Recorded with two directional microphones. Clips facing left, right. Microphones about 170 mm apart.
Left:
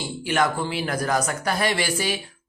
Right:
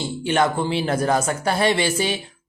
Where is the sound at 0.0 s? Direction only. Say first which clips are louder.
Right 3 dB; 25° right (ahead or behind).